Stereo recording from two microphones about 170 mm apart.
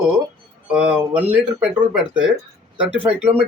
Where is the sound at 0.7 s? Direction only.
5° right (ahead or behind).